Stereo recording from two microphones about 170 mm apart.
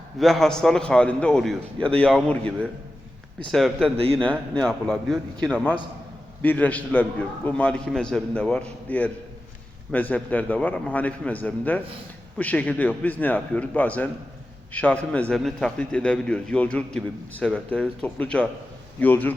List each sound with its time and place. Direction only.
0.2 s a man's voice: centre (ahead or behind)
3.9 s a man's voice: 35° right (ahead or behind)
4.2 s a man's voice: 5° left (ahead or behind)